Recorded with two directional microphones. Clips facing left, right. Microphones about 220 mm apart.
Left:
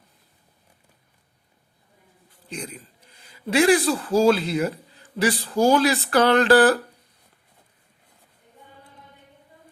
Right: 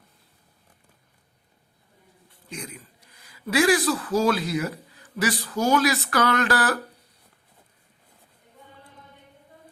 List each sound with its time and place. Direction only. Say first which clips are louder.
2.5 s a man's voice: left 3 dB; 30° left (ahead or behind)